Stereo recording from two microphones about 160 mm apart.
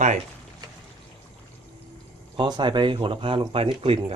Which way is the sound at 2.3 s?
30° right (ahead or behind).